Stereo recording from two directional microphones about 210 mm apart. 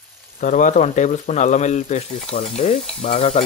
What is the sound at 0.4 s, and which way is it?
Speech, 35° left (ahead or behind).